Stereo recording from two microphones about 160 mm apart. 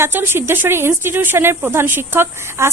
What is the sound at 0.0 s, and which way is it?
Speech, 15° right (ahead or behind).